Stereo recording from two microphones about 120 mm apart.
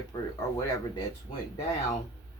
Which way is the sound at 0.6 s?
30° left (ahead or behind).